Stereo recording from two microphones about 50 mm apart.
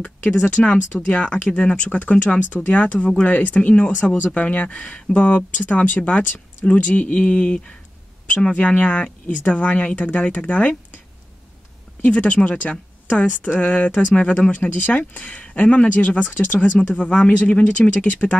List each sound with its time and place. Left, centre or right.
0.0 s speech: left
4.6 s speech: centre
12.0 s speech: left